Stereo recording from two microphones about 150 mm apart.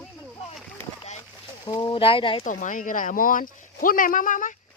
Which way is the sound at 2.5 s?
60° left (ahead or behind).